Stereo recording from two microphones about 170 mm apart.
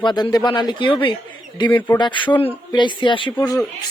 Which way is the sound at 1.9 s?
30° left (ahead or behind).